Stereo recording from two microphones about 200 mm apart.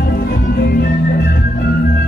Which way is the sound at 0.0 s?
50° left (ahead or behind).